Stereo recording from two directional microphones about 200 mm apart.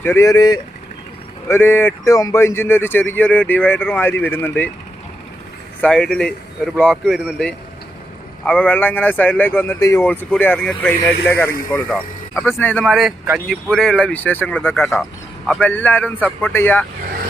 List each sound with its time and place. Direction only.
0.0 s a man's voice: 15° left (ahead or behind)
5.8 s a man's voice: centre (ahead or behind)